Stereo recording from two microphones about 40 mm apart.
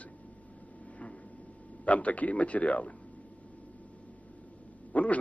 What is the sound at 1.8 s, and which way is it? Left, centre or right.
Speech, left.